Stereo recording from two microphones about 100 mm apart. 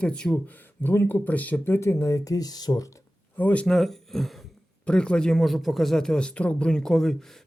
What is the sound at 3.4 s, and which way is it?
Speech, 15° left (ahead or behind).